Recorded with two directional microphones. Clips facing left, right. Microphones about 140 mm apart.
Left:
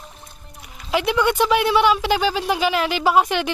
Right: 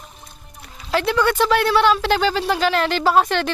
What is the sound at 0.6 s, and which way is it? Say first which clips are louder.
Speech: right 1 dB; 15° left (ahead or behind).